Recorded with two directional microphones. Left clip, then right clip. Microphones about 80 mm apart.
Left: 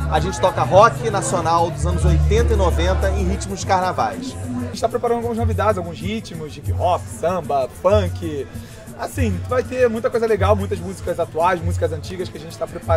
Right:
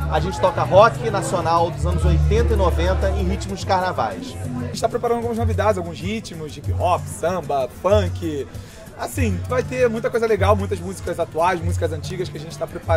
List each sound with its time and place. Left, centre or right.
0.1 s speech: centre
4.7 s speech: right